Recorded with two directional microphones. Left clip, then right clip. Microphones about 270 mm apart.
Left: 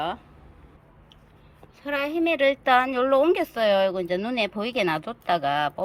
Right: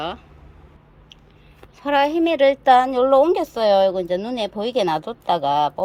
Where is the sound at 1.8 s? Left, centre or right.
Centre.